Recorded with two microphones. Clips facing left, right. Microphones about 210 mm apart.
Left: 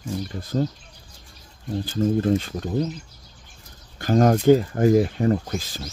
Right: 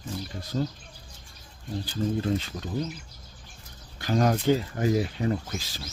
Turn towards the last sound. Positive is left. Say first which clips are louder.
# left 7 dB
turn(degrees=50)  # may be behind; listen again after turning